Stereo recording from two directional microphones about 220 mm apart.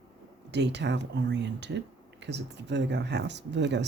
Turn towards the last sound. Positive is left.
turn(degrees=-50)  # may be behind; listen again after turning